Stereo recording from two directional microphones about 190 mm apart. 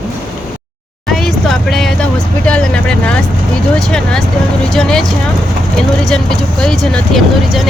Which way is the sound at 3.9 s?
5° left (ahead or behind).